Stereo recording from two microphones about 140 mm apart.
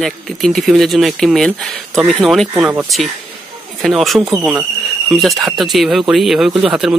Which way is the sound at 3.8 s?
Centre (ahead or behind).